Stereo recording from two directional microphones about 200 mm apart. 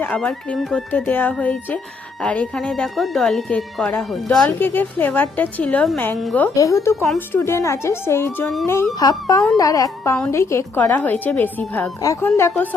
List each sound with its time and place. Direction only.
0.0 s speech: 5° left (ahead or behind)